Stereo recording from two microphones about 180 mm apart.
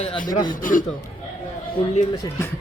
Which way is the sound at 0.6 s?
50° left (ahead or behind).